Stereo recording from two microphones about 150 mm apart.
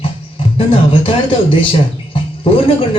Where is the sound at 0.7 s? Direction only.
35° left (ahead or behind).